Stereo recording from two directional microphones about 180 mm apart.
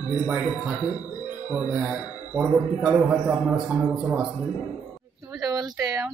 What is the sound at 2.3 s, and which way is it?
Speech, 5° right (ahead or behind).